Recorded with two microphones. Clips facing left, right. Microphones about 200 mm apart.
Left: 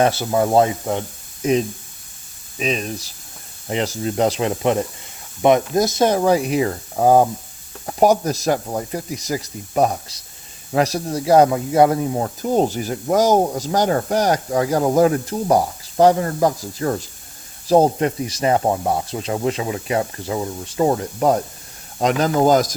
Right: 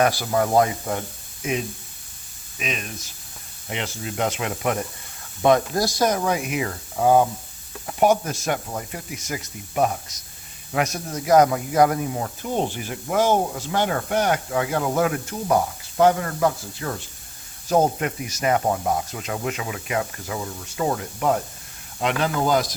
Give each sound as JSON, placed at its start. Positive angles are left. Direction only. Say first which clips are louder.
{"t": 0.0, "sound": "speech", "louder": "left 3 dB", "side_deg": 25}
{"t": 1.4, "sound": "speech", "louder": "left 8 dB", "side_deg": 35}